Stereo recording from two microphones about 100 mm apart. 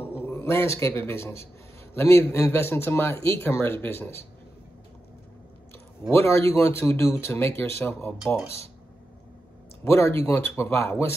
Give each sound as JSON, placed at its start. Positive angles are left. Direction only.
{"t": 0.2, "sound": "a man's voice", "side_deg": 25}
{"t": 6.1, "sound": "speech", "side_deg": 25}
{"t": 9.8, "sound": "speech", "side_deg": 25}